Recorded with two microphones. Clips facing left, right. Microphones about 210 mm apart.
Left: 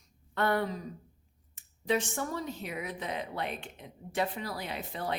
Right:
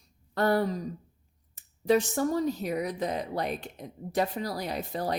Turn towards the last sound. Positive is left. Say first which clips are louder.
# right 5 dB
turn(degrees=-40)  # may be behind; listen again after turning